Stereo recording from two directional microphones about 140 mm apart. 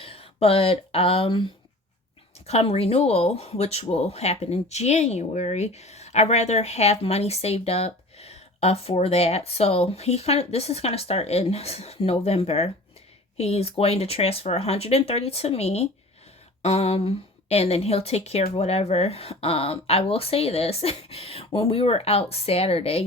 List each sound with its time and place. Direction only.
0.0 s speech: 45° left (ahead or behind)
2.5 s speech: 45° left (ahead or behind)